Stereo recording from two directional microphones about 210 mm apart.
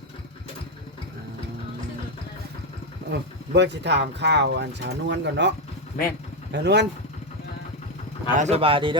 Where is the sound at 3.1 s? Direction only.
55° right (ahead or behind).